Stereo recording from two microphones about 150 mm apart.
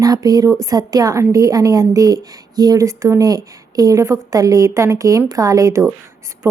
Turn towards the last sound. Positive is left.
turn(degrees=-15)  # may be behind; listen again after turning